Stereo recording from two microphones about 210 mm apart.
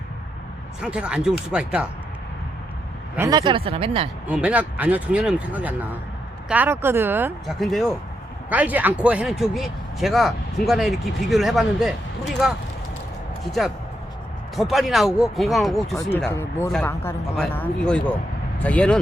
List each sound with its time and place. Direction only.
0.8 s speech: 5° right (ahead or behind)
3.2 s speech: 20° right (ahead or behind)
4.3 s speech: 5° right (ahead or behind)
7.6 s speech: centre (ahead or behind)
14.5 s speech: centre (ahead or behind)
16.0 s speech: 10° left (ahead or behind)